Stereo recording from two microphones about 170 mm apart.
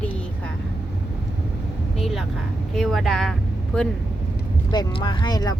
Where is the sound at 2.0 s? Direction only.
Centre (ahead or behind).